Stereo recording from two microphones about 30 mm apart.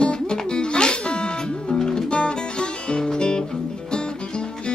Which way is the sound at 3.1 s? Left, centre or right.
Left.